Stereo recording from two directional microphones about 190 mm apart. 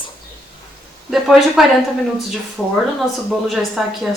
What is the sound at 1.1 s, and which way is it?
Speech, centre (ahead or behind).